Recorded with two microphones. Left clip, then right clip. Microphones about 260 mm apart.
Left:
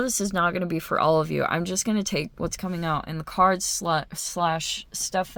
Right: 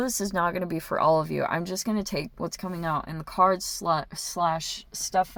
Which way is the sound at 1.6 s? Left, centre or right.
Left.